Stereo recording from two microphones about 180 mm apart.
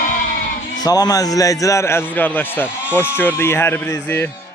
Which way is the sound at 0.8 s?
20° left (ahead or behind).